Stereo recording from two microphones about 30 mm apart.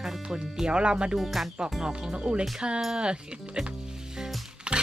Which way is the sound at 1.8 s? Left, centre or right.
Right.